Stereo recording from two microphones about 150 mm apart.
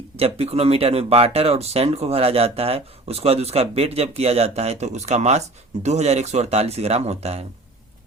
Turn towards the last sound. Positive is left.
turn(degrees=-45)  # may be behind; listen again after turning